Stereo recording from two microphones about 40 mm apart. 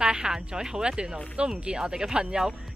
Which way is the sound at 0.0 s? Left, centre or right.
Centre.